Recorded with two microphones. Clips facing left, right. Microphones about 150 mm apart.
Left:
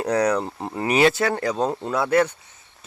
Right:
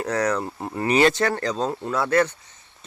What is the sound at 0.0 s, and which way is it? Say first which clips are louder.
Speech: left 3 dB; 15° left (ahead or behind).